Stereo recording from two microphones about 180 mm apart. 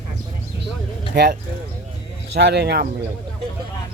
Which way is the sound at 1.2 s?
65° right (ahead or behind).